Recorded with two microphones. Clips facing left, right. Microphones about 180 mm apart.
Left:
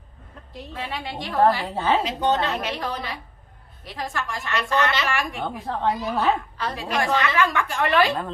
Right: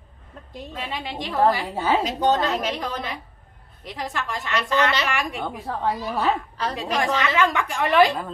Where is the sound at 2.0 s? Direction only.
40° right (ahead or behind).